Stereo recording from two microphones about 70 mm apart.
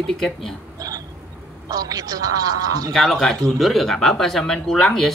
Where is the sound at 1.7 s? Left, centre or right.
Right.